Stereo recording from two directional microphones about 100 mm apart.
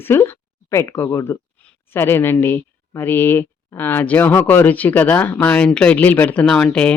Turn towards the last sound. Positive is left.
turn(degrees=10)  # may be behind; listen again after turning